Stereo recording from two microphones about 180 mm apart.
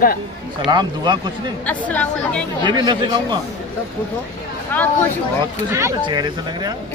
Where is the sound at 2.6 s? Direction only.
25° right (ahead or behind).